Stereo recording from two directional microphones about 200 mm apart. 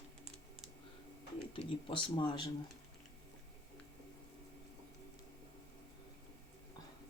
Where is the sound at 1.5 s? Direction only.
25° left (ahead or behind).